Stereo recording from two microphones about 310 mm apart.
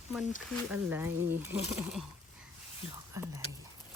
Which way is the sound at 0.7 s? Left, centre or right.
Centre.